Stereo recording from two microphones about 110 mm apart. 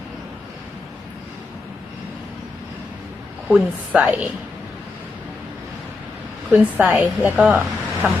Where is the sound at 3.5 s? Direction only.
5° right (ahead or behind).